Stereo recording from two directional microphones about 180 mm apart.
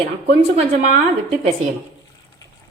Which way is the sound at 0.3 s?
35° right (ahead or behind).